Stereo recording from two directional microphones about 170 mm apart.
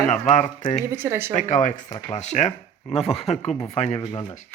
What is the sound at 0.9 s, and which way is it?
Speech, 15° right (ahead or behind).